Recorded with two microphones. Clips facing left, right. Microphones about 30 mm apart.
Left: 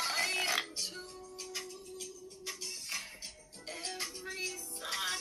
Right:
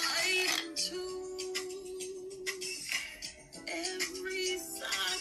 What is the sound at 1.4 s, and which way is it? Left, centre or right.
Music, right.